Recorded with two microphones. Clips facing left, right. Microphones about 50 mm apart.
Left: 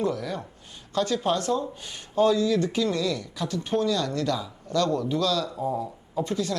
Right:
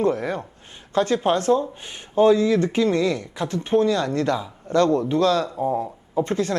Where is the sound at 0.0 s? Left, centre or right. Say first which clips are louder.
Right 6 dB; right.